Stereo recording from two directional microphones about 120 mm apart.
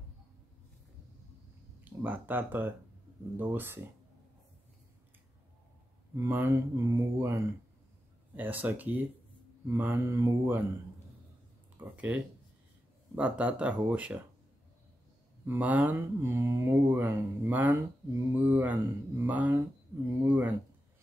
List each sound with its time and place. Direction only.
1.9 s speech: 15° right (ahead or behind)
6.1 s speech: 20° right (ahead or behind)
11.8 s speech: 15° right (ahead or behind)
13.1 s speech: 10° right (ahead or behind)
15.4 s speech: 15° right (ahead or behind)